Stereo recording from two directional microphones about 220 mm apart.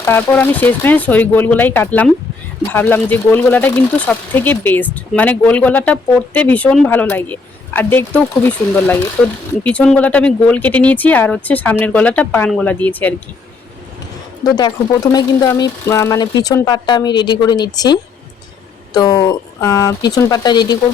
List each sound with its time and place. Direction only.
0.0 s speech: 10° left (ahead or behind)
14.4 s speech: 20° left (ahead or behind)
18.9 s speech: 15° left (ahead or behind)